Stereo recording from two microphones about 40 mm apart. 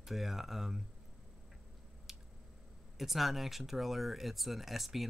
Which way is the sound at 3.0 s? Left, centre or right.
Centre.